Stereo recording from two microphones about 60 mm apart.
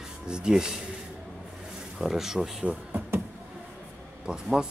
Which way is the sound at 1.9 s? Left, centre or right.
Centre.